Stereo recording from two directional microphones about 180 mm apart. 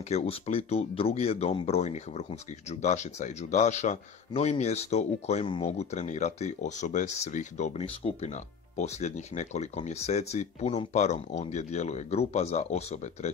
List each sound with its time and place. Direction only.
0.1 s speech: 35° left (ahead or behind)